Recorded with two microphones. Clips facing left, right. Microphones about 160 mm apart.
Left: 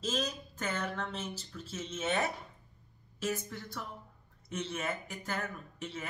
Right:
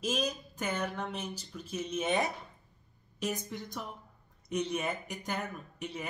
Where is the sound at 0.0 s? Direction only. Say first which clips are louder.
Right 2 dB; 10° right (ahead or behind).